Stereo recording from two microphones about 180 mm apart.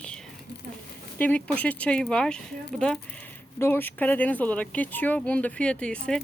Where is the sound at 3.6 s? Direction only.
10° left (ahead or behind).